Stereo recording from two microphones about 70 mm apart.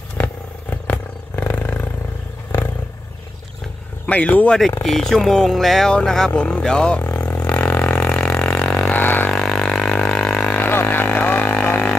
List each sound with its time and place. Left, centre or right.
0.2 s roaring cats: left
4.0 s speech: left
4.8 s speech: centre
7.2 s vehicle: centre
8.9 s a sound: left
9.3 s didgeridoo: centre
10.7 s music: left